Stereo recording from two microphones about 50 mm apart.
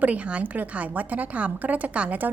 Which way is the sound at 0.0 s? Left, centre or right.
Right.